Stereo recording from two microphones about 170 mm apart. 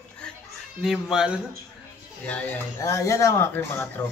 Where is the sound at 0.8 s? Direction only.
5° right (ahead or behind).